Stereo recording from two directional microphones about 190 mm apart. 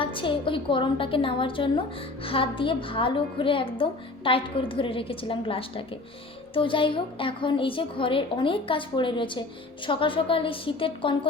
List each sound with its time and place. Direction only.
0.0 s a woman's voice: 25° left (ahead or behind)